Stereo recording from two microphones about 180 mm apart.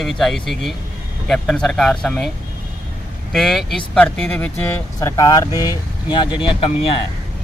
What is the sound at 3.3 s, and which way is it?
Speech, centre (ahead or behind).